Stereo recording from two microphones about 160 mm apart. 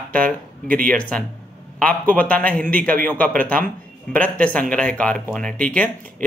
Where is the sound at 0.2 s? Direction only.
60° right (ahead or behind).